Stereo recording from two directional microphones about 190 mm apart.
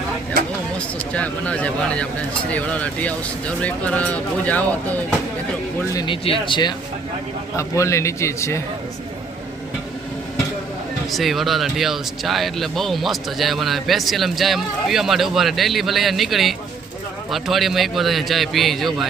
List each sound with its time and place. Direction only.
0.4 s a sound: 50° right (ahead or behind)
0.8 s speech: 5° left (ahead or behind)
5.9 s speech: 25° left (ahead or behind)
11.1 s speech: centre (ahead or behind)